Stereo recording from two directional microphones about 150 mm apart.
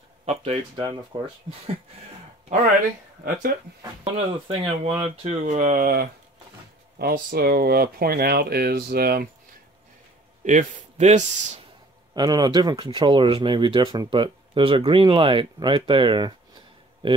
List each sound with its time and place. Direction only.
0.2 s a sound: 45° right (ahead or behind)
1.1 s speech: 35° right (ahead or behind)
2.5 s speech: 55° right (ahead or behind)
4.0 s speech: 40° right (ahead or behind)
5.2 s speech: 50° right (ahead or behind); by 6.0 s 75° right (ahead or behind)
7.0 s speech: 90° right
10.4 s speech: 55° right (ahead or behind)
12.1 s speech: 25° right (ahead or behind)